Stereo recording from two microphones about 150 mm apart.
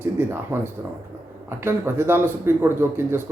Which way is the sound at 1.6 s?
15° right (ahead or behind).